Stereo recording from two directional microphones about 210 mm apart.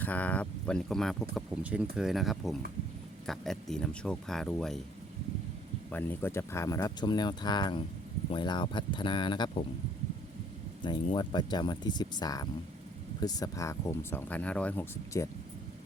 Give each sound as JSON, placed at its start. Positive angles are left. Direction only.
{"t": 0.0, "sound": "speech", "side_deg": 10}
{"t": 5.9, "sound": "speech", "side_deg": 10}
{"t": 10.8, "sound": "speech", "side_deg": 20}